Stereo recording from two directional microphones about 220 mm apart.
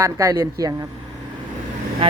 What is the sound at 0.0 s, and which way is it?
Speech, 15° right (ahead or behind).